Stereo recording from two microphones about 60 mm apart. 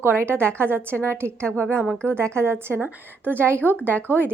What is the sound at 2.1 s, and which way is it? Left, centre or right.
Speech, right.